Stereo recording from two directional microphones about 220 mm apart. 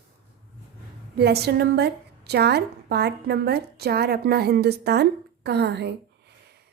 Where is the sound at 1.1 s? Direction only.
45° right (ahead or behind).